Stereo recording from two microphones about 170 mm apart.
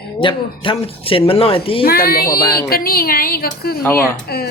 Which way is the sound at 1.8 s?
65° left (ahead or behind).